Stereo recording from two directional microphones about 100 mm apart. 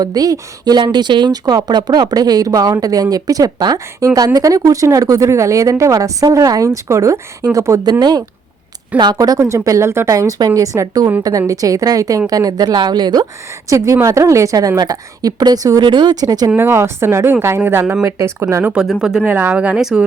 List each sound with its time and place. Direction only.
0.0 s speech: 40° right (ahead or behind)
7.9 s a woman's voice: 45° right (ahead or behind)
13.7 s speech: 30° right (ahead or behind)
15.8 s a woman's voice: 50° right (ahead or behind)
16.6 s speech: 25° right (ahead or behind)
18.6 s speech: 10° right (ahead or behind)
19.2 s speech: 15° right (ahead or behind)